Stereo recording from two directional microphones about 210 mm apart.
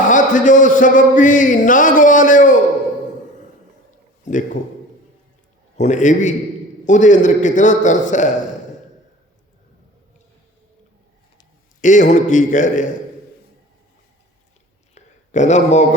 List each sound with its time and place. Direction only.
0.1 s speech: 40° left (ahead or behind)
5.7 s speech: 35° left (ahead or behind)
11.8 s speech: 35° left (ahead or behind)
14.9 s a sound: 35° left (ahead or behind)